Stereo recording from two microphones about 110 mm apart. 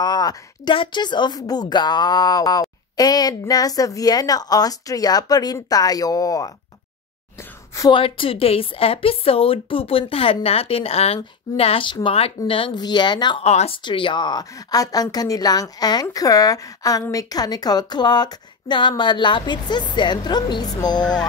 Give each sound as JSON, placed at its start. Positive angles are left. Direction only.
{"t": 0.0, "sound": "a sound", "side_deg": 40}
{"t": 0.7, "sound": "a woman's voice", "side_deg": 45}
{"t": 7.9, "sound": "a woman's voice", "side_deg": 55}
{"t": 13.4, "sound": "speech", "side_deg": 75}
{"t": 13.8, "sound": "a woman's voice", "side_deg": 45}